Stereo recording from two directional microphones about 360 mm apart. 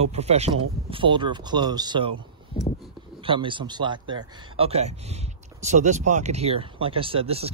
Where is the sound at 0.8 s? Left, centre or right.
Centre.